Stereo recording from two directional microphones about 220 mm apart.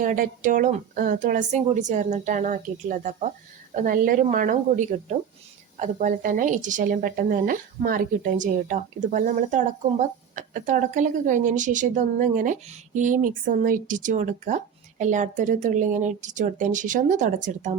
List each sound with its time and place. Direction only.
0.0 s a woman's voice: 35° right (ahead or behind)